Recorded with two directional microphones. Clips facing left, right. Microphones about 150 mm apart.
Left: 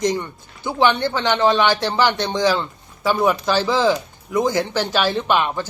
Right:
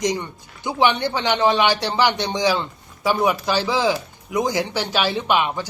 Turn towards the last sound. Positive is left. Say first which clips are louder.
# left 1 dB
turn(degrees=-10)  # may be behind; listen again after turning